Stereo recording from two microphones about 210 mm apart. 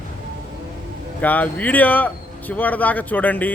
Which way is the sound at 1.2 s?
10° left (ahead or behind).